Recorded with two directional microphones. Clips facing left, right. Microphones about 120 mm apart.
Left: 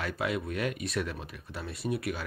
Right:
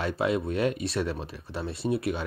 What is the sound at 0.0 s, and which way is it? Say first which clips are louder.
Speech: right 5 dB; 30° right (ahead or behind).